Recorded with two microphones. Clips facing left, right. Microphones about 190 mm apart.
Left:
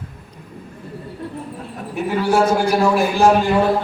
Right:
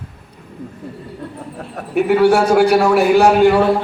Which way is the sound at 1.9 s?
70° right (ahead or behind).